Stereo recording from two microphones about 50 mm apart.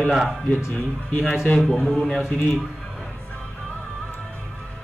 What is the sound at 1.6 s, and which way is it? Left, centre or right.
Speech, centre.